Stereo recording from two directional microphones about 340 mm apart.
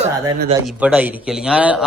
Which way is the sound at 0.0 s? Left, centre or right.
Centre.